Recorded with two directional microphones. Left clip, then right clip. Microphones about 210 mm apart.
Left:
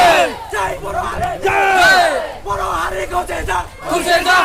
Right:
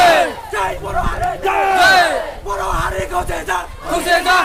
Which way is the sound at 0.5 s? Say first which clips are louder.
Even; 10° left (ahead or behind).